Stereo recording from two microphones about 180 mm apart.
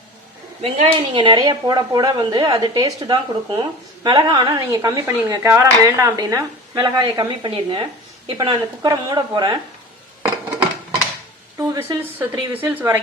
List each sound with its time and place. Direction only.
0.6 s speech: 30° right (ahead or behind)
11.5 s a woman's voice: 15° right (ahead or behind)